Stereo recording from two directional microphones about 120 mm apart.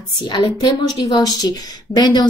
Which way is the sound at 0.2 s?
40° left (ahead or behind).